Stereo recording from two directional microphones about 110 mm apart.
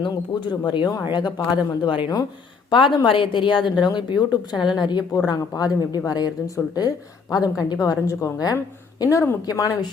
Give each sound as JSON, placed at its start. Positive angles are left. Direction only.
{"t": 0.0, "sound": "a woman's voice", "side_deg": 40}
{"t": 9.5, "sound": "a woman's voice", "side_deg": 35}